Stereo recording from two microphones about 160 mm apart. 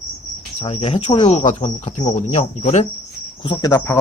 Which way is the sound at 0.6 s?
40° left (ahead or behind).